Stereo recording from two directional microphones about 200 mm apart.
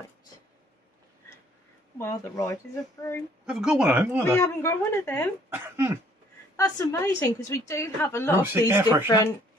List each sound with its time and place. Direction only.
2.0 s a woman's voice: 15° left (ahead or behind)
3.4 s speech: 5° right (ahead or behind)
4.4 s a woman's voice: 10° left (ahead or behind)
5.5 s speech: 10° right (ahead or behind)
6.5 s a woman's voice: 15° left (ahead or behind)
8.4 s speech: 10° right (ahead or behind)
9.0 s speech: 20° left (ahead or behind)